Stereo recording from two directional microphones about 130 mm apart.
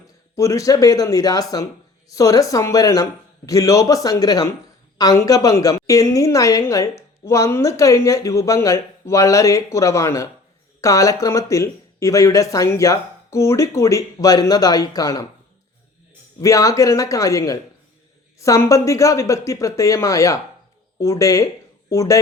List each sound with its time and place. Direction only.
0.3 s a woman's voice: 25° left (ahead or behind)
16.4 s a woman's voice: 25° left (ahead or behind)